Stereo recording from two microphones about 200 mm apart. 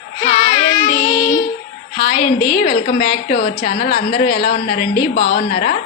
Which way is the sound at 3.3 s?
50° left (ahead or behind).